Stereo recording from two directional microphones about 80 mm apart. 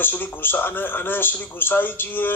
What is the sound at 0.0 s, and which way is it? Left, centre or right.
Speech, left.